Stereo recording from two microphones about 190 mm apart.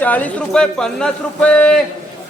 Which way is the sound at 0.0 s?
10° left (ahead or behind).